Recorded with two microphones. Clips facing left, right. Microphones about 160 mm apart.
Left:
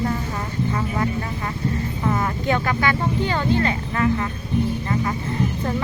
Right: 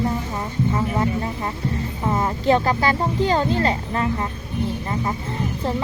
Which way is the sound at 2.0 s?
25° right (ahead or behind).